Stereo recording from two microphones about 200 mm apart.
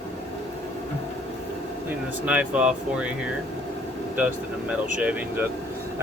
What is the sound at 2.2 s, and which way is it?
Speech, 10° right (ahead or behind).